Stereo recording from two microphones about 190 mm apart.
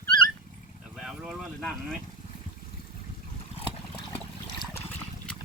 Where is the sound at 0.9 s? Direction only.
Centre (ahead or behind).